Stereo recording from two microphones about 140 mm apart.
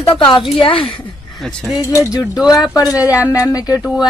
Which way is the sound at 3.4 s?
25° left (ahead or behind).